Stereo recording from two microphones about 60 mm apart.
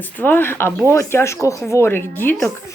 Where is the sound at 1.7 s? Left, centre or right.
Left.